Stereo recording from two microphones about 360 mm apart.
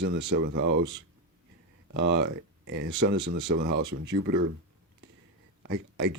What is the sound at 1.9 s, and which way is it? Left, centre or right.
Speech, right.